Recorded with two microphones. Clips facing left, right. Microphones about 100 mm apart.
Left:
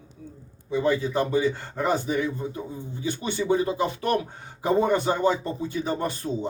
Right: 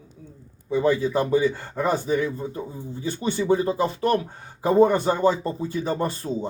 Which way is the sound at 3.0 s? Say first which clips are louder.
Right 2 dB; 35° right (ahead or behind).